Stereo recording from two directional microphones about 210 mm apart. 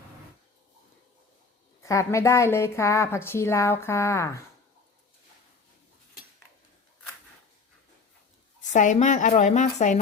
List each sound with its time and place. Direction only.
1.8 s a woman's voice: 15° left (ahead or behind)
8.7 s a woman's voice: 35° left (ahead or behind)